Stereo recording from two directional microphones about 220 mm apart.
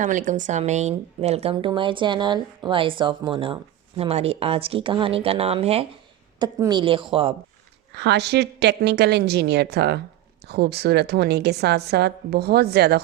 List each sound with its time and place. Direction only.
0.0 s speech: 35° right (ahead or behind)
7.9 s a woman's voice: 50° right (ahead or behind)